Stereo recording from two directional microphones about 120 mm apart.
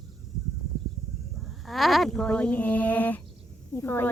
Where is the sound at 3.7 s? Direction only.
20° left (ahead or behind).